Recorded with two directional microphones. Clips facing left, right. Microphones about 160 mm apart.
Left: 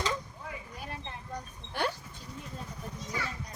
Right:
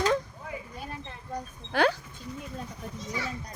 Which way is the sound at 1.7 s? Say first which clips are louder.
Right 8 dB; 90° right.